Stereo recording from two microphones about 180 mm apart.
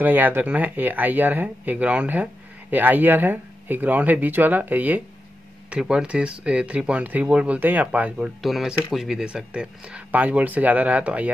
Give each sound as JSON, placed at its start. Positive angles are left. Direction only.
{"t": 0.0, "sound": "speech", "side_deg": -10}